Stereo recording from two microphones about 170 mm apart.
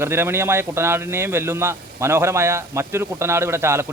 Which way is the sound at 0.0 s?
15° right (ahead or behind).